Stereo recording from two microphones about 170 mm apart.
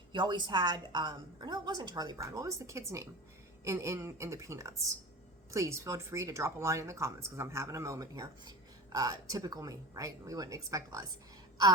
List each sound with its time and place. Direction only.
0.1 s a woman's voice: 25° right (ahead or behind)